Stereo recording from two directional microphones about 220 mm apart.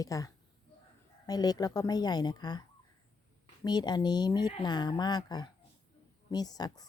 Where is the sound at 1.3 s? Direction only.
15° left (ahead or behind).